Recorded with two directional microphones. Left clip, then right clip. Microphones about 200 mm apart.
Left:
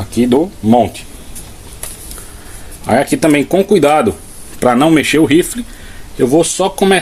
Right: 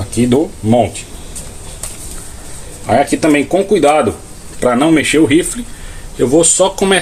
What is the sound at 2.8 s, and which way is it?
Speech, 60° left (ahead or behind).